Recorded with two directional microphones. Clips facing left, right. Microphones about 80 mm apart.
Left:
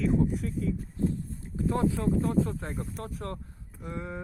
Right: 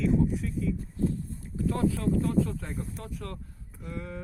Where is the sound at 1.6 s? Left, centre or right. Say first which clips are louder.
Even; left.